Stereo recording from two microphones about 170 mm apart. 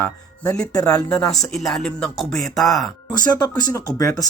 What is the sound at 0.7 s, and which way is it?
Speech, 20° left (ahead or behind).